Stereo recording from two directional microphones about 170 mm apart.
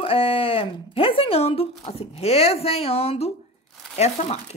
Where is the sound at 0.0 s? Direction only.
35° left (ahead or behind).